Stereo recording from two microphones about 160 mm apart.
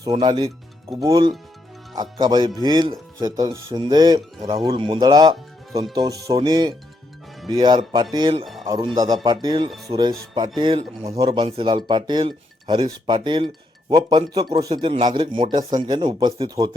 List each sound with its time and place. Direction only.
0.0 s speech: 25° right (ahead or behind)
11.3 s speech: 35° right (ahead or behind)